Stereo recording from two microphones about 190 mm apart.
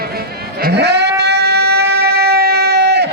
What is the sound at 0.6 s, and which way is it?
Sheep, 60° right (ahead or behind).